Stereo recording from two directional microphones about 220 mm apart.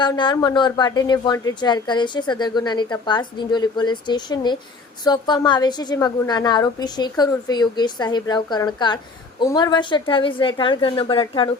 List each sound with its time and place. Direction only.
0.0 s a woman's voice: 20° left (ahead or behind)